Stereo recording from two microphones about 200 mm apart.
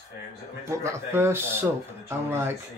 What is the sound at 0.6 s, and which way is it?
Speech, 15° right (ahead or behind).